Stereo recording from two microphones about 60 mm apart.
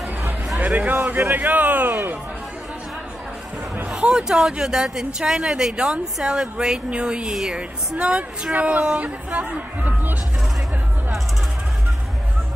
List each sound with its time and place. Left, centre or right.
0.6 s speech: right
3.9 s speech: centre